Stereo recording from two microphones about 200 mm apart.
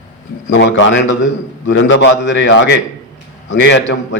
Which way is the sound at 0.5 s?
65° left (ahead or behind).